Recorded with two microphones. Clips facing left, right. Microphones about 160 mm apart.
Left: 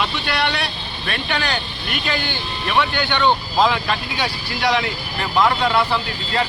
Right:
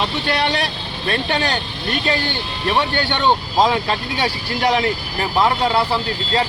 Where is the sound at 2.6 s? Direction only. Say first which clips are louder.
Right 1 dB; 35° right (ahead or behind).